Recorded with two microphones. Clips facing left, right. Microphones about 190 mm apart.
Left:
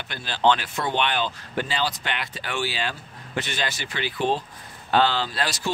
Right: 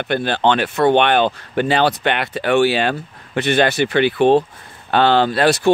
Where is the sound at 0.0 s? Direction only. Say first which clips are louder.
Right 6 dB; 60° right (ahead or behind).